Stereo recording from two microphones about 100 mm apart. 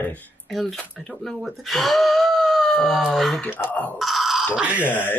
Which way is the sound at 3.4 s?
20° left (ahead or behind).